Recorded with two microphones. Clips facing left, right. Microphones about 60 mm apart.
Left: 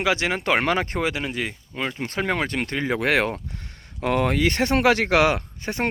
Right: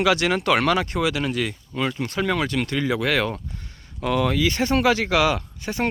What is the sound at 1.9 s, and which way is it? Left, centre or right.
Speech, left.